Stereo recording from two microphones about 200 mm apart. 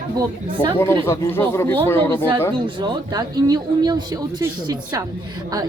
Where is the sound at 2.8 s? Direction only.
20° right (ahead or behind).